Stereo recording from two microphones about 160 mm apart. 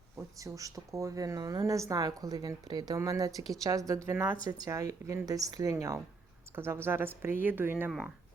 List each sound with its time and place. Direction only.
0.2 s a woman's voice: 20° right (ahead or behind)
7.9 s speech: centre (ahead or behind)